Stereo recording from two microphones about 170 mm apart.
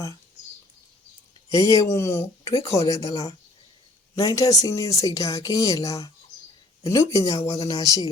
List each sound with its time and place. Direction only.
1.5 s speech: 20° left (ahead or behind)